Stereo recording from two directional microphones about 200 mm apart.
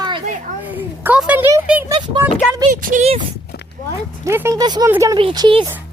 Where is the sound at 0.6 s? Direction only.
5° right (ahead or behind).